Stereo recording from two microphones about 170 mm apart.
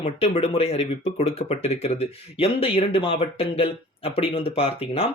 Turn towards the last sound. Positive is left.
turn(degrees=35)  # may be behind; listen again after turning